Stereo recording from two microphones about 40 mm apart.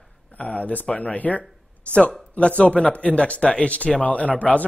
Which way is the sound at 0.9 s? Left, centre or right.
Left.